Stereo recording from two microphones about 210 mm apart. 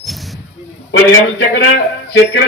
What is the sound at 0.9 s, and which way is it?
Speech, 55° left (ahead or behind).